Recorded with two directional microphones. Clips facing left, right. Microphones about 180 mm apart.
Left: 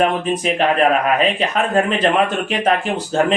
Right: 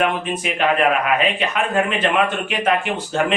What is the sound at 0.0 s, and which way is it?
Speech, 35° left (ahead or behind).